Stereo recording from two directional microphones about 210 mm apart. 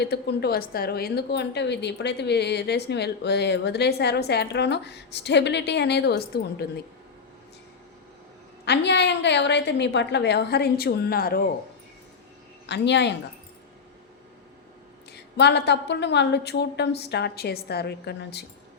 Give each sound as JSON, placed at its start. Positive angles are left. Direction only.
{"t": 0.0, "sound": "a woman's voice", "side_deg": 50}
{"t": 8.6, "sound": "a woman's voice", "side_deg": 55}
{"t": 12.6, "sound": "a woman's voice", "side_deg": 55}
{"t": 15.1, "sound": "a woman's voice", "side_deg": 55}